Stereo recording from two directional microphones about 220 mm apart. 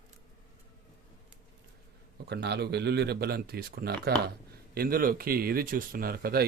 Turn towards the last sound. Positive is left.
turn(degrees=-45)  # may be behind; listen again after turning